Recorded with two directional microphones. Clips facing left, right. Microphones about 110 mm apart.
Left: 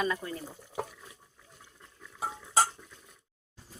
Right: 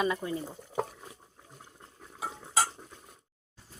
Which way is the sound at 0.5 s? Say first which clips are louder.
Right 4 dB; 35° right (ahead or behind).